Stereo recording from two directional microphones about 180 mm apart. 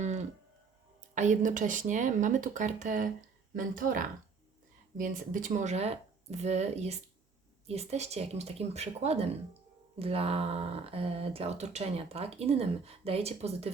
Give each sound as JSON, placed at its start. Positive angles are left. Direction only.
{"t": 1.1, "sound": "speech", "side_deg": -40}